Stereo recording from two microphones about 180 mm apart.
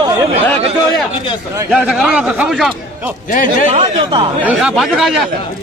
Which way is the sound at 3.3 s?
50° left (ahead or behind).